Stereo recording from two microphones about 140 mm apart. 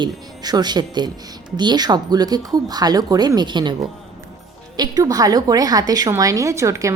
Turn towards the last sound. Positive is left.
turn(degrees=-20)  # may be behind; listen again after turning